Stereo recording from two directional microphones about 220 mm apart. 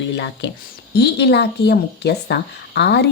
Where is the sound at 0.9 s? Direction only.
50° left (ahead or behind).